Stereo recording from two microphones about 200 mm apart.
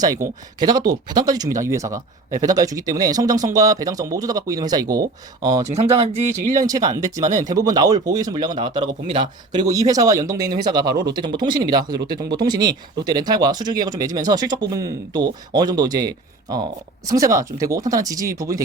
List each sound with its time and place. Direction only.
0.6 s speech: 20° right (ahead or behind)
5.6 s speech: 30° right (ahead or behind)
6.6 s speech: 15° right (ahead or behind)